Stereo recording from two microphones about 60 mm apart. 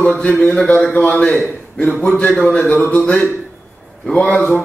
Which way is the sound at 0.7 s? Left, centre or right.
Left.